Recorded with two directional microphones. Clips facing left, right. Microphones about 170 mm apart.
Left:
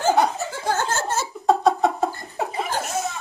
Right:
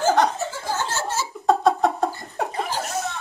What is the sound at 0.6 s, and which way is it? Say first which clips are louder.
Laughter: left 5 dB; 50° left (ahead or behind).